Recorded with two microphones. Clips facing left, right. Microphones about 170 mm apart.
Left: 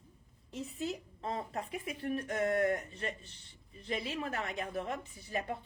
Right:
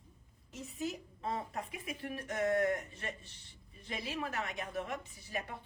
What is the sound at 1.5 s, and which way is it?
Speech, 30° left (ahead or behind).